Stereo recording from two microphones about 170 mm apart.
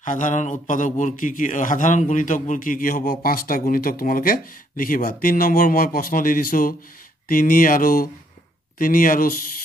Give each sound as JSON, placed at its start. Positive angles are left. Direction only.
{"t": 0.0, "sound": "a man's voice", "side_deg": 50}